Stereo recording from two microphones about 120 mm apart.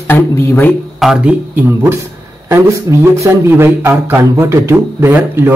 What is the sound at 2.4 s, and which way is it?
A man's voice, 25° right (ahead or behind).